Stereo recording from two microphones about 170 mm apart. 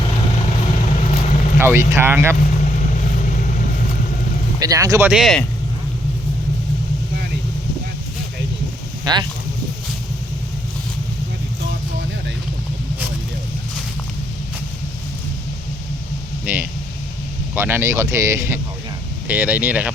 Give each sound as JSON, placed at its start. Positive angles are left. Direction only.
{"t": 0.3, "sound": "vehicle", "side_deg": 45}
{"t": 1.5, "sound": "speech", "side_deg": -15}
{"t": 2.9, "sound": "vehicle", "side_deg": 50}
{"t": 4.6, "sound": "speech", "side_deg": -20}
{"t": 9.1, "sound": "speech", "side_deg": -25}
{"t": 16.5, "sound": "speech", "side_deg": -10}